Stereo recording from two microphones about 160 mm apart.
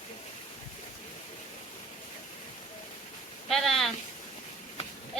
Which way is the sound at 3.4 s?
Centre (ahead or behind).